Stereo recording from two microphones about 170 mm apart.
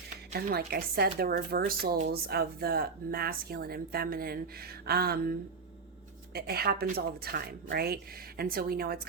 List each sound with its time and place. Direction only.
0.3 s speech: 65° right (ahead or behind)
6.3 s speech: 65° right (ahead or behind)